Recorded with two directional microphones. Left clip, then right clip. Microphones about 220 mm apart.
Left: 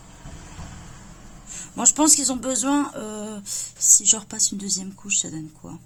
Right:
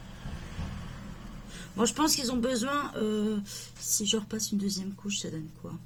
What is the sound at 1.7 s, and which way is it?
Speech, 50° left (ahead or behind).